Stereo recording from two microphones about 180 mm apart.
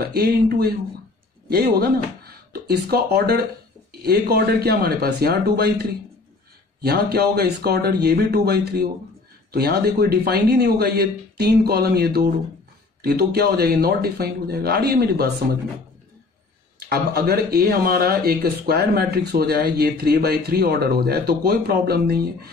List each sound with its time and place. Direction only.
0.1 s speech: 60° right (ahead or behind)
6.8 s speech: 60° right (ahead or behind)
16.9 s speech: 60° right (ahead or behind)